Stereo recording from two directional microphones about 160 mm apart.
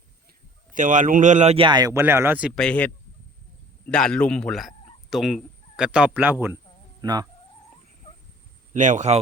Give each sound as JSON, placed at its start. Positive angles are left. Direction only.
{"t": 0.7, "sound": "speech", "side_deg": -55}
{"t": 2.6, "sound": "a man's voice", "side_deg": 5}
{"t": 7.0, "sound": "speech", "side_deg": -25}
{"t": 8.7, "sound": "speech", "side_deg": -50}